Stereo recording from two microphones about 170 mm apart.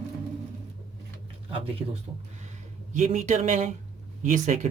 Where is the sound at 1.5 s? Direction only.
30° right (ahead or behind).